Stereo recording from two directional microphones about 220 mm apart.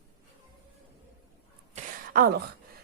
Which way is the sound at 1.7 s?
40° right (ahead or behind).